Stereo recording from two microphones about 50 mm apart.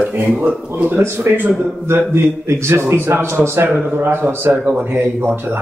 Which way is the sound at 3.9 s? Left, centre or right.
Right.